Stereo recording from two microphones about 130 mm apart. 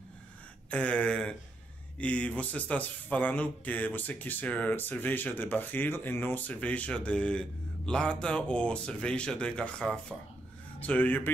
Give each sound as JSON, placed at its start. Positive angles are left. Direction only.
{"t": 0.7, "sound": "speech", "side_deg": 10}